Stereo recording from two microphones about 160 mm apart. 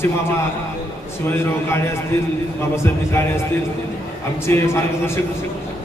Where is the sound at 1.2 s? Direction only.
15° left (ahead or behind).